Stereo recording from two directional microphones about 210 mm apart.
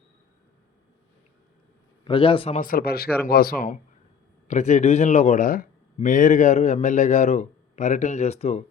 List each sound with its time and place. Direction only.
2.0 s a man's voice: 25° left (ahead or behind)
2.6 s speech: 45° left (ahead or behind)